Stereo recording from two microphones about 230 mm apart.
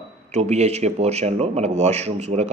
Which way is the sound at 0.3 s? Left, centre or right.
Right.